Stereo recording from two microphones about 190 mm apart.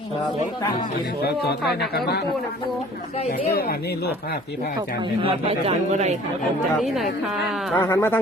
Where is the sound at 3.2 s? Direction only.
35° left (ahead or behind).